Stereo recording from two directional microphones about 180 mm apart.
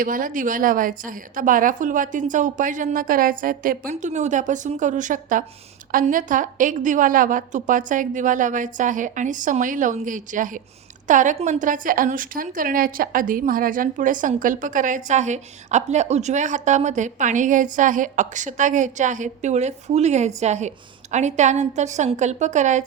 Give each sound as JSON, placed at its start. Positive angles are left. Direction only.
{"t": 0.0, "sound": "a woman's voice", "side_deg": -50}